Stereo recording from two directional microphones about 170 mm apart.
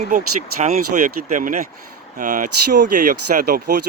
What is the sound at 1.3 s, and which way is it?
Speech, 50° right (ahead or behind).